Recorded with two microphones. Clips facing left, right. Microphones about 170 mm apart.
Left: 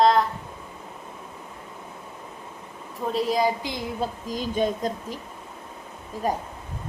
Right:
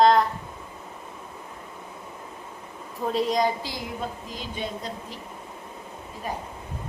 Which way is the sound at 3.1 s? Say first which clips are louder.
Left 1 dB; centre (ahead or behind).